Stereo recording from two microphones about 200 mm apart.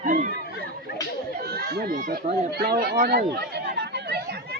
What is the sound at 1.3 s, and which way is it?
Speech, 50° right (ahead or behind).